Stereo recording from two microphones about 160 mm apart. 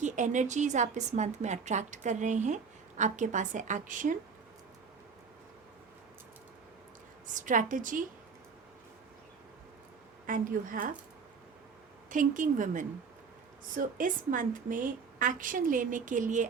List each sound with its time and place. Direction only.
0.0 s a woman's voice: 50° right (ahead or behind)
7.3 s a woman's voice: 55° right (ahead or behind)
10.2 s a woman's voice: 60° right (ahead or behind)
12.1 s a woman's voice: 55° right (ahead or behind)